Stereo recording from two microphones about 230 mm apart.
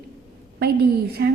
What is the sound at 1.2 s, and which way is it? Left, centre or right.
Speech, right.